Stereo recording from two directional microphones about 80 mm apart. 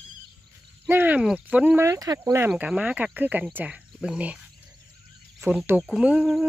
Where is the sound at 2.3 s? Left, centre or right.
Centre.